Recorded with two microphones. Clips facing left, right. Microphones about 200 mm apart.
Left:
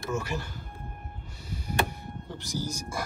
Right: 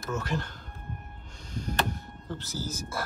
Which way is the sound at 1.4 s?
10° left (ahead or behind).